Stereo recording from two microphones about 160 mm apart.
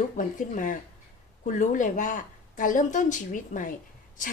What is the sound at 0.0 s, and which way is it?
A woman's voice, 50° left (ahead or behind).